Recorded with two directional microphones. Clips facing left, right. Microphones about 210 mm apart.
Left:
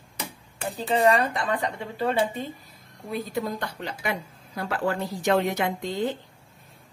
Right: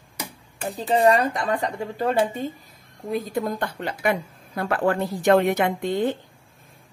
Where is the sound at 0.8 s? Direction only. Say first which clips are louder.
Right 3 dB; 40° right (ahead or behind).